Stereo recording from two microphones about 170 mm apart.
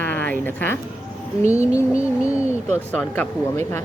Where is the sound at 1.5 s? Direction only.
10° right (ahead or behind).